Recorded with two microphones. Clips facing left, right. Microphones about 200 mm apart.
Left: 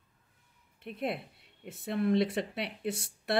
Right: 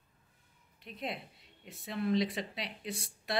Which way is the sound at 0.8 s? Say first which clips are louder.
Left 6 dB; 55° left (ahead or behind).